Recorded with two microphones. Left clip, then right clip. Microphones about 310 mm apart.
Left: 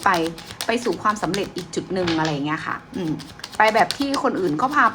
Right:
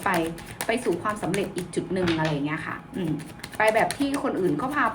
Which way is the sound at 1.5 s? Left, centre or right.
Centre.